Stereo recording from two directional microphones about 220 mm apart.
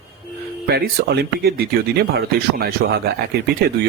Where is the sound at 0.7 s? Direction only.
45° right (ahead or behind).